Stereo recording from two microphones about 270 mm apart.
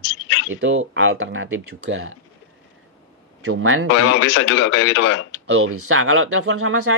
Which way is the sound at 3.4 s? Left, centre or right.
Right.